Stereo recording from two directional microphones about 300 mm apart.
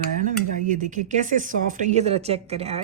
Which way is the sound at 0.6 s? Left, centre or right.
Right.